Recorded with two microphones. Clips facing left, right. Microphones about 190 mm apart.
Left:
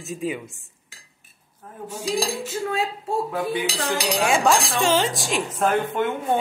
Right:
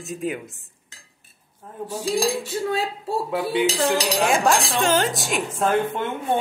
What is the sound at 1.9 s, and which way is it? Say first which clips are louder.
Speech: right 3 dB; 35° right (ahead or behind).